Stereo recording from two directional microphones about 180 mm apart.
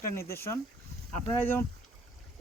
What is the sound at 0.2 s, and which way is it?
Speech, 15° left (ahead or behind).